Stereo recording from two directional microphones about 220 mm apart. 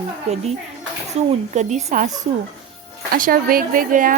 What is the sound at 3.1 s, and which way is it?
Speech, 40° right (ahead or behind).